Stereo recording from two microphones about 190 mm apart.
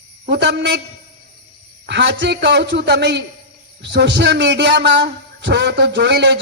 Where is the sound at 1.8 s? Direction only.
65° right (ahead or behind).